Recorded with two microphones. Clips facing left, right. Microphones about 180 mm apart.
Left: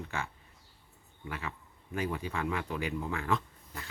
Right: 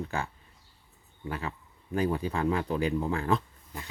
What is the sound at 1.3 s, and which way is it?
Speech, 35° right (ahead or behind).